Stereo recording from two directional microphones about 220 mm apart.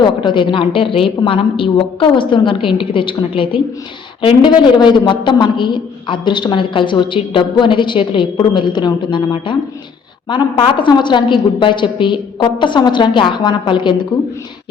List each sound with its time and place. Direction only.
0.0 s a woman's voice: 20° left (ahead or behind)